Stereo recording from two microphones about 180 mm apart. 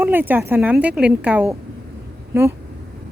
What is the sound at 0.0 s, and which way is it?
Speech, 10° right (ahead or behind).